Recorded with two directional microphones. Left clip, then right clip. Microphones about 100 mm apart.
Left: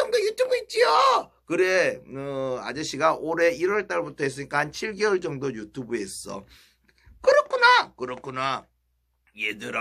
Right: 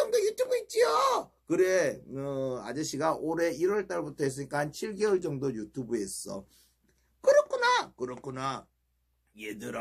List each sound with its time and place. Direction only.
0.0 s speech: 40° right (ahead or behind)
7.2 s a sound: 40° right (ahead or behind)
8.0 s speech: 40° right (ahead or behind)